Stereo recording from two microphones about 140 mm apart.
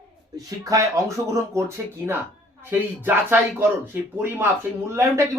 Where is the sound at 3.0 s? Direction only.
15° right (ahead or behind).